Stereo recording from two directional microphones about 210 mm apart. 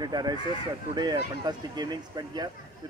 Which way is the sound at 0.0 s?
20° right (ahead or behind).